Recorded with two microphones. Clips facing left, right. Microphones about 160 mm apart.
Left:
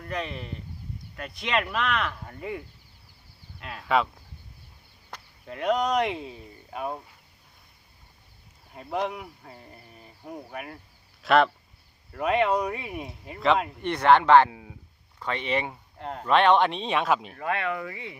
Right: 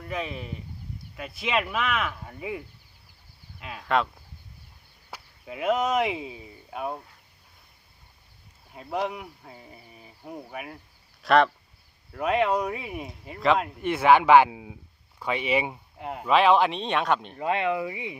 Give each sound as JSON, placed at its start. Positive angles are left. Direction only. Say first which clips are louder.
{"t": 0.0, "sound": "speech", "louder": "even", "side_deg": 0}
{"t": 5.1, "sound": "speech", "louder": "right 1 dB", "side_deg": -5}
{"t": 8.7, "sound": "speech", "louder": "even", "side_deg": 0}
{"t": 17.3, "sound": "speech", "louder": "right 3 dB", "side_deg": -20}